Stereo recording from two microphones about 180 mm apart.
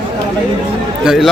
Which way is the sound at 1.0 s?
Centre (ahead or behind).